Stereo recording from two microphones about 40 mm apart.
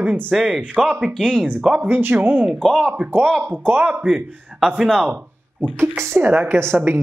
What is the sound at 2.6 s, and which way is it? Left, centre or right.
Speech, centre.